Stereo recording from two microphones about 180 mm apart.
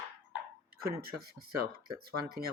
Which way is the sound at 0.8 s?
60° right (ahead or behind).